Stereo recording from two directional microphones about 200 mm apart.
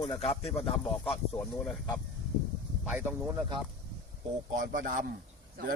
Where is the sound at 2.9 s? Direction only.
5° right (ahead or behind).